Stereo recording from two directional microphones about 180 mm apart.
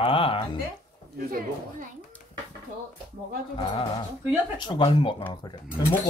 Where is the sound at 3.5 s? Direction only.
30° left (ahead or behind).